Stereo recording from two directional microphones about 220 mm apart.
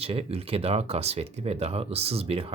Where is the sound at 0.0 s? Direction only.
25° right (ahead or behind).